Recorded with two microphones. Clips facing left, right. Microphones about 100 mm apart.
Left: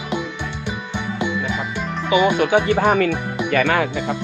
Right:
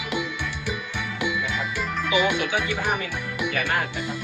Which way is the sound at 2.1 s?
40° left (ahead or behind).